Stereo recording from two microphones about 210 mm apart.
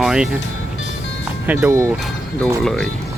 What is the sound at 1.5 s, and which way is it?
Speech, 10° right (ahead or behind).